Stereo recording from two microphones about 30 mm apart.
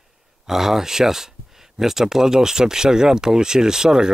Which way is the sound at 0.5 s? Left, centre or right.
Centre.